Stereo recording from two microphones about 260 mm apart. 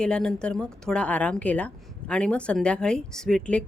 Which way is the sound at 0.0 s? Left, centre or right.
Centre.